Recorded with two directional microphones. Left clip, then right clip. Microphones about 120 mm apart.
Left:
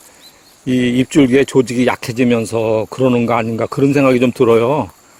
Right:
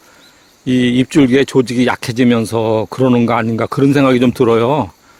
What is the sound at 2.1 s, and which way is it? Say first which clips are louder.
Speech: right 1 dB; 45° right (ahead or behind).